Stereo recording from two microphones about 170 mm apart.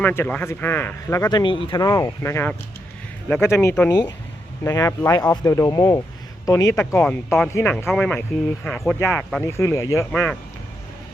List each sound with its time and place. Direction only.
0.0 s speech: 10° left (ahead or behind); by 1.8 s 30° left (ahead or behind)
1.8 s speech: 20° left (ahead or behind)
6.7 s speech: 5° left (ahead or behind)